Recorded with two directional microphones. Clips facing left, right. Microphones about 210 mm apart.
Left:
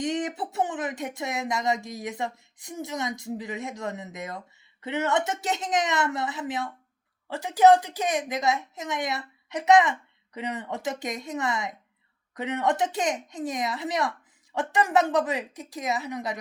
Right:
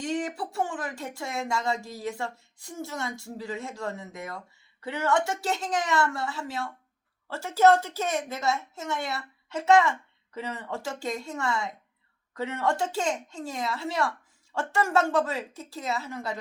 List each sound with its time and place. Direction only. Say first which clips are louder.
0.0 s a woman's voice: left 2 dB; 20° left (ahead or behind)